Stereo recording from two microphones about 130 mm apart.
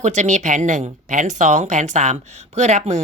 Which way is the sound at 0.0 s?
65° right (ahead or behind).